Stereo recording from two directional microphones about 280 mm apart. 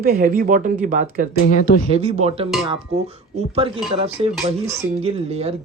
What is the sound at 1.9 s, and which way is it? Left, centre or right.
Speech, right.